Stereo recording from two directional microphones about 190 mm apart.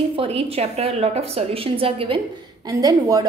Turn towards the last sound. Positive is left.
turn(degrees=-20)  # may be behind; listen again after turning